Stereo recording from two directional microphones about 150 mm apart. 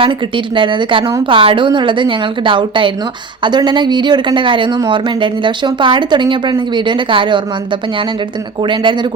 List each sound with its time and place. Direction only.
0.0 s speech: 35° right (ahead or behind)